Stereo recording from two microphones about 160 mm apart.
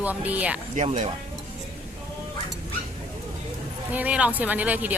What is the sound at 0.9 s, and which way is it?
Speech, 40° right (ahead or behind).